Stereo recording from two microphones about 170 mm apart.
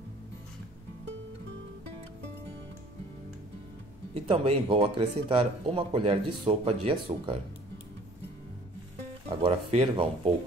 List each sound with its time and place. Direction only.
4.1 s speech: 35° right (ahead or behind)
9.3 s speech: 35° right (ahead or behind)